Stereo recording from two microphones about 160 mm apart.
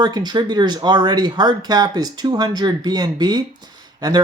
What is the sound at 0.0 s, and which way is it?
Speech, 25° right (ahead or behind).